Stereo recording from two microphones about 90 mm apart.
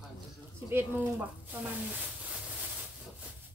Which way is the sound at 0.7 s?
20° right (ahead or behind).